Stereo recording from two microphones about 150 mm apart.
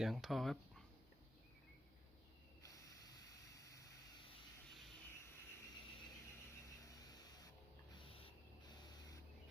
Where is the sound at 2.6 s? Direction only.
20° left (ahead or behind).